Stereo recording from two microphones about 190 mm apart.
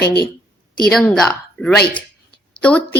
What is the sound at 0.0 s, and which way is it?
Speech, 60° left (ahead or behind).